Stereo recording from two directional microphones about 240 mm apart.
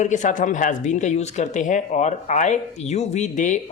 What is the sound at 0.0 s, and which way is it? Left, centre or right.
A woman's voice, left.